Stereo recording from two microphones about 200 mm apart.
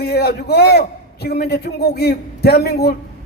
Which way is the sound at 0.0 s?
55° left (ahead or behind).